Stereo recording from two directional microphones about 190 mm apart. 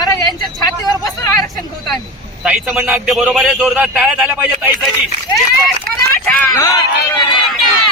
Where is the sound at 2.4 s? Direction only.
5° right (ahead or behind).